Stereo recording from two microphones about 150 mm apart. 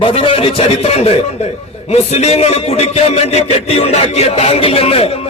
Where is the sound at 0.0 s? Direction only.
40° left (ahead or behind).